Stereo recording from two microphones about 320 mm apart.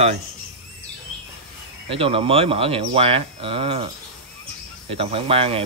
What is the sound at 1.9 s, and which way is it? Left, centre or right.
Speech, centre.